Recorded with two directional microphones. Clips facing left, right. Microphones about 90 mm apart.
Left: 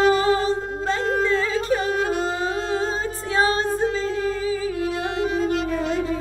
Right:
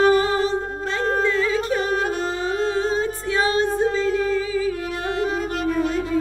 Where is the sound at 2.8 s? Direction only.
35° left (ahead or behind).